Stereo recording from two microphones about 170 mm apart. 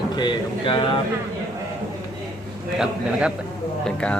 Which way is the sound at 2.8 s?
5° right (ahead or behind).